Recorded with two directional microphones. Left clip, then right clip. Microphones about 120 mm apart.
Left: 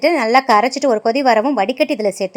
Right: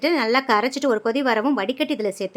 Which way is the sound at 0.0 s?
30° left (ahead or behind).